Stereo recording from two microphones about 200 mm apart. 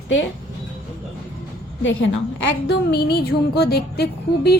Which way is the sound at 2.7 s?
55° left (ahead or behind).